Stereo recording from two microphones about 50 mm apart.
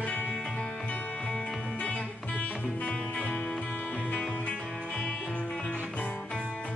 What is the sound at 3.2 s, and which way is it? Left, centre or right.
Music, left.